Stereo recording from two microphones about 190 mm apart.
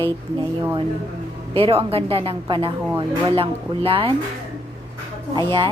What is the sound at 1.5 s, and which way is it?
A woman's voice, 30° right (ahead or behind).